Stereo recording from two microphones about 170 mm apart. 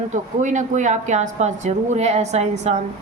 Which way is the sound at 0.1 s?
45° right (ahead or behind).